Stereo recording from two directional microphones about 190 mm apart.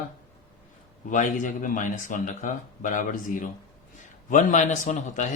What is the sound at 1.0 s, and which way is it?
Speech, 40° left (ahead or behind).